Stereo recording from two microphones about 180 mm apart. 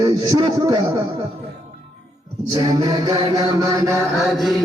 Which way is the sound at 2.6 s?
20° right (ahead or behind).